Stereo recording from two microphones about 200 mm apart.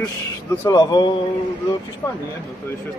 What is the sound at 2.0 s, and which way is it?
Speech, 10° left (ahead or behind).